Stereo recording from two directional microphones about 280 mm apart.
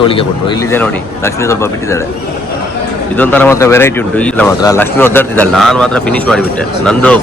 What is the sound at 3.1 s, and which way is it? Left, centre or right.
Speech, centre.